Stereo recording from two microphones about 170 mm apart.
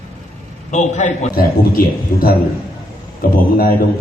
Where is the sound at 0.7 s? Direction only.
45° left (ahead or behind).